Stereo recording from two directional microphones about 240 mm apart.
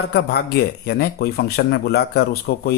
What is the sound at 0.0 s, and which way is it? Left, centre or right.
Speech, left.